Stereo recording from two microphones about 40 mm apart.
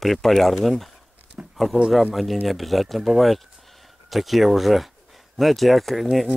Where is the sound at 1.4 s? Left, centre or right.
Right.